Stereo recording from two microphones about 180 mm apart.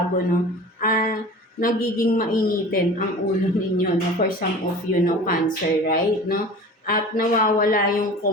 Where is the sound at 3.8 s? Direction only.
50° left (ahead or behind).